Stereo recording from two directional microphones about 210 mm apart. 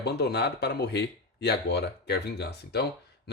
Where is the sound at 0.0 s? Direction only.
50° left (ahead or behind).